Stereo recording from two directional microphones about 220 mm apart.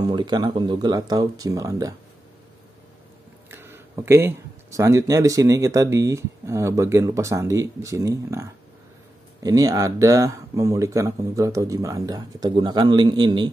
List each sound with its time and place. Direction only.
0.0 s speech: 20° right (ahead or behind)
3.4 s speech: 10° right (ahead or behind)